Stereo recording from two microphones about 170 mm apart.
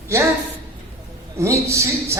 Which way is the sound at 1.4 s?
15° right (ahead or behind).